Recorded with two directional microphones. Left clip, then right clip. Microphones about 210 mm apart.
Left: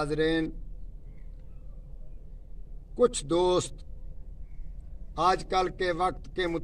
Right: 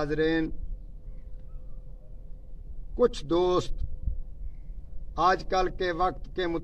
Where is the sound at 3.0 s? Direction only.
Centre (ahead or behind).